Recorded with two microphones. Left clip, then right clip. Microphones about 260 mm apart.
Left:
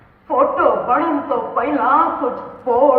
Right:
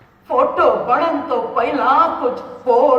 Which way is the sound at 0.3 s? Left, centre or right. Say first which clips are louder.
Right 1 dB; right.